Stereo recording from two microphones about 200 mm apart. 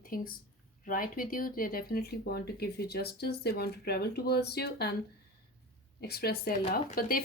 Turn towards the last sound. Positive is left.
turn(degrees=45)  # may be behind; listen again after turning